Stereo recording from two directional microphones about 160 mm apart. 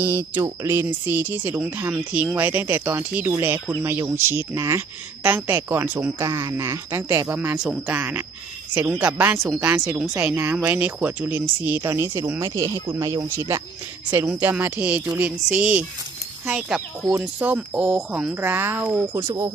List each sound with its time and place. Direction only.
0.0 s speech: 20° right (ahead or behind)
19.3 s speech: 25° right (ahead or behind)